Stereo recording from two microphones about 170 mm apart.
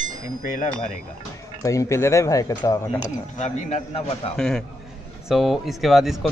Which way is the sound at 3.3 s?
45° left (ahead or behind).